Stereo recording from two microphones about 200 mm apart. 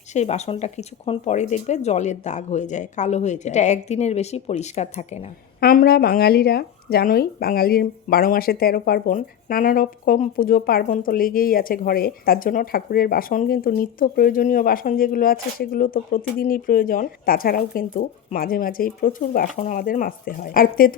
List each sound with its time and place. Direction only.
0.1 s speech: 35° left (ahead or behind)
5.5 s speech: 50° left (ahead or behind)